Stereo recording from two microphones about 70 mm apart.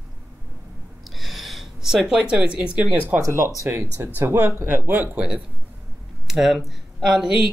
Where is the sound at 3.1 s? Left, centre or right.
Right.